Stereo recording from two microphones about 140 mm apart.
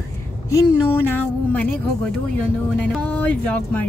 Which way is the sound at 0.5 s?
20° left (ahead or behind).